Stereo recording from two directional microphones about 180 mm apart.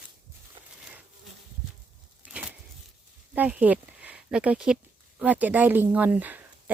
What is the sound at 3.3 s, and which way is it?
Speech, 10° right (ahead or behind).